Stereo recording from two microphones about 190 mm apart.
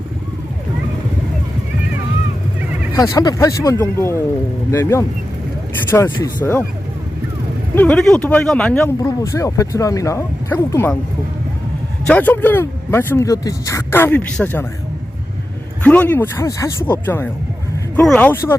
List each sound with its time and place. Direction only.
2.9 s speech: 20° left (ahead or behind)
6.4 s speech: 10° left (ahead or behind)
7.8 s speech: 5° left (ahead or behind)
9.0 s speech: 15° left (ahead or behind)
12.0 s speech: 10° left (ahead or behind)
15.8 s speech: 10° left (ahead or behind)